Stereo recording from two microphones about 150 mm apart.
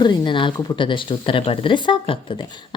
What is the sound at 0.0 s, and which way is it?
Speech, 30° left (ahead or behind).